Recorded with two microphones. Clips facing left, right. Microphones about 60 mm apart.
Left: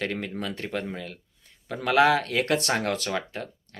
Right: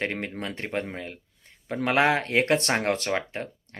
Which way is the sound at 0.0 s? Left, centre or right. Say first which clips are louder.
Even; right.